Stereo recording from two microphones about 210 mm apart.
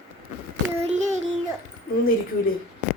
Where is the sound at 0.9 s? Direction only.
35° right (ahead or behind).